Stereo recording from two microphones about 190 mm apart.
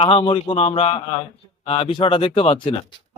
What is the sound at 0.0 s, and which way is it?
Speech, 30° left (ahead or behind).